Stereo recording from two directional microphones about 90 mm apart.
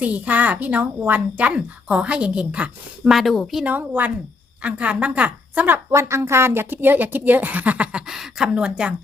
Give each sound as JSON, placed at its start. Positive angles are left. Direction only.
{"t": 0.0, "sound": "a woman's voice", "side_deg": -15}
{"t": 3.6, "sound": "a woman's voice", "side_deg": -15}
{"t": 5.9, "sound": "a woman's voice", "side_deg": -30}